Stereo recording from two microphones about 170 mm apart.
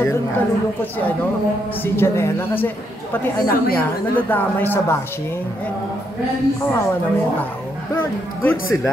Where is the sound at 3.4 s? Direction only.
60° left (ahead or behind).